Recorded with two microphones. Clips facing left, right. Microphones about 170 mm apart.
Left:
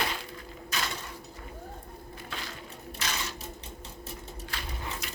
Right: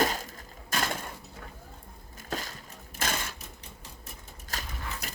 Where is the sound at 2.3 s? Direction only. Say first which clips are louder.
Right 6 dB; 45° right (ahead or behind).